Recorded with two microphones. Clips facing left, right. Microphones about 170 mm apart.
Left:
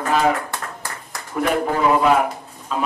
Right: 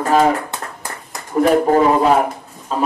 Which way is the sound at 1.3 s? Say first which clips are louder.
Right 7 dB; 40° right (ahead or behind).